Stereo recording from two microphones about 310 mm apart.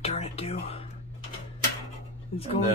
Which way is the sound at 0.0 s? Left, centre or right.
Centre.